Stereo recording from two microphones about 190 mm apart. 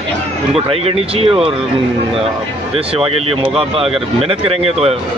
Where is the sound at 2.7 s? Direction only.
30° right (ahead or behind).